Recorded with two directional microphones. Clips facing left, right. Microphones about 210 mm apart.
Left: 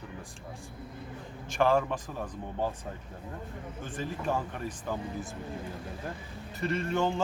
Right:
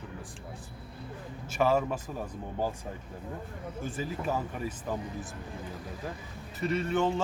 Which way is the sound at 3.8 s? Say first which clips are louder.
Even; 5° right (ahead or behind).